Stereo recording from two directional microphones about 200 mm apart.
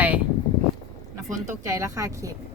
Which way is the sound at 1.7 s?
15° right (ahead or behind).